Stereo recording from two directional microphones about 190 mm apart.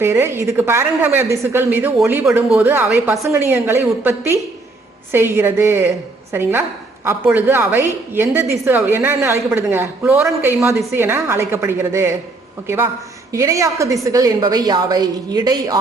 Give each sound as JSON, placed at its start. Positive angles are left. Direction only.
{"t": 0.0, "sound": "a woman's voice", "side_deg": -15}